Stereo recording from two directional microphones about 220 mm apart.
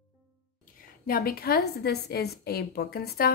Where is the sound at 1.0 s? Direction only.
40° left (ahead or behind).